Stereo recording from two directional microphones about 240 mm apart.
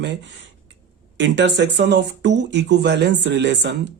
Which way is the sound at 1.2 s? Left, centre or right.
Right.